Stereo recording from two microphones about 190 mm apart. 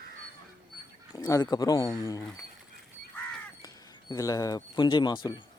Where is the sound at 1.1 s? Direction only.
15° left (ahead or behind).